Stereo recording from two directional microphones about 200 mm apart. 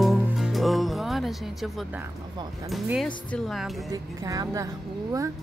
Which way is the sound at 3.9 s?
15° right (ahead or behind).